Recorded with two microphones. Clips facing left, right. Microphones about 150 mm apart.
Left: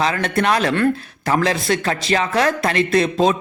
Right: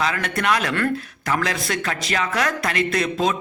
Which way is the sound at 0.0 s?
30° left (ahead or behind).